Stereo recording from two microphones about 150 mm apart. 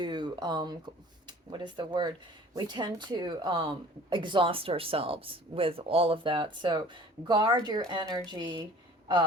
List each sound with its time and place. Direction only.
0.0 s a woman's voice: 30° right (ahead or behind)